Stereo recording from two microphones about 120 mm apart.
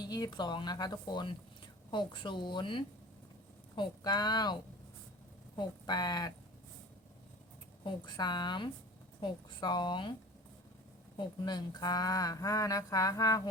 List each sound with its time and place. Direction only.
0.0 s speech: 35° left (ahead or behind)
7.9 s speech: 35° left (ahead or behind)
11.2 s speech: 35° left (ahead or behind)